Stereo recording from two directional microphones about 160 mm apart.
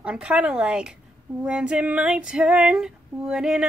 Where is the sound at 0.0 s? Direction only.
5° right (ahead or behind).